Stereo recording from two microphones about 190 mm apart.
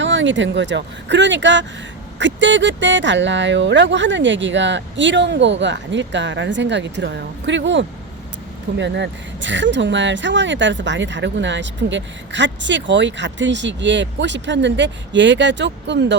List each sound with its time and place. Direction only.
0.0 s speech: 75° right (ahead or behind)